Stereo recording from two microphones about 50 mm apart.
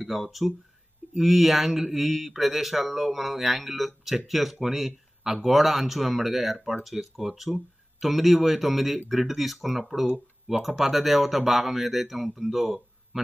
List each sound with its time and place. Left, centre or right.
0.0 s speech: centre
10.0 s speech: right
10.6 s speech: centre